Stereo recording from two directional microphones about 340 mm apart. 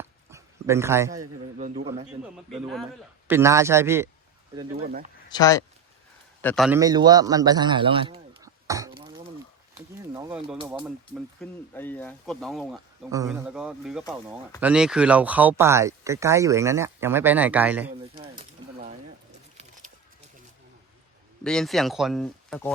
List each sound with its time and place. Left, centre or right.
0.0 s dog: centre
1.5 s a man's voice: centre
2.5 s a man's voice: centre
5.3 s a man's voice: centre
10.8 s speech: centre
18.1 s pigeon: centre
21.4 s speech: centre